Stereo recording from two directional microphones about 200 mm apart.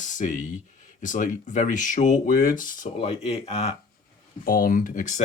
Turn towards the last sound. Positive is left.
turn(degrees=40)  # may be behind; listen again after turning